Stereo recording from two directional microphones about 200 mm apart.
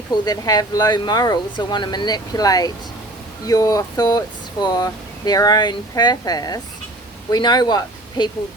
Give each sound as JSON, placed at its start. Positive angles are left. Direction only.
{"t": 0.3, "sound": "speech", "side_deg": 20}